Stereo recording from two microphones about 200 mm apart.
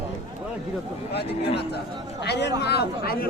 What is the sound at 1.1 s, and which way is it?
A woman's voice, 55° left (ahead or behind).